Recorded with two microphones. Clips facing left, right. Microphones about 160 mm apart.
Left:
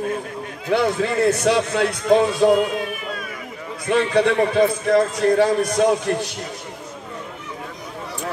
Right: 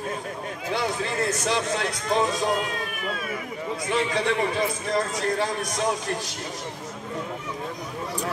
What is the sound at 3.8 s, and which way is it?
A man's voice, 60° left (ahead or behind).